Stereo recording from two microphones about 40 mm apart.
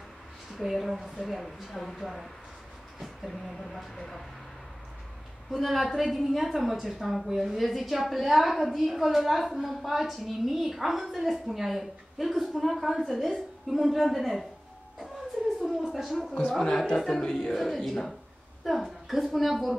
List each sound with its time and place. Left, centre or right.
0.6 s a woman's voice: centre
5.5 s a woman's voice: centre
15.6 s a woman's voice: centre
16.7 s speech: centre
17.6 s a woman's voice: centre